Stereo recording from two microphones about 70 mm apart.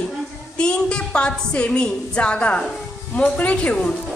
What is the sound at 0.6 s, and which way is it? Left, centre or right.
A woman's voice, centre.